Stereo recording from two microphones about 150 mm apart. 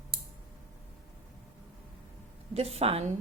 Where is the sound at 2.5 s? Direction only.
40° right (ahead or behind).